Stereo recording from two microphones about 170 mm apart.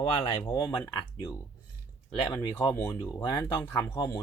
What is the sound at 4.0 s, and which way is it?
Speech, 25° left (ahead or behind).